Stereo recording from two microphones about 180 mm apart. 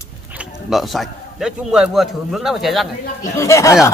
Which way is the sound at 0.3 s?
5° right (ahead or behind).